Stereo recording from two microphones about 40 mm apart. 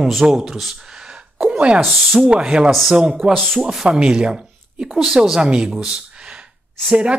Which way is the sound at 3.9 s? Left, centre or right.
Right.